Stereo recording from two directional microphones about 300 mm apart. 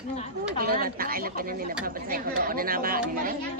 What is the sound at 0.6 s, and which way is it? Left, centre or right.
A woman's voice, right.